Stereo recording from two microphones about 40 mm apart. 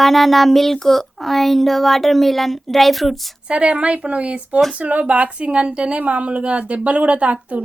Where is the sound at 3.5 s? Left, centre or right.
Right.